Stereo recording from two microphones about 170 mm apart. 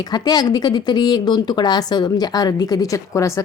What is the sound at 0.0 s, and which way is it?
Speech, 25° left (ahead or behind).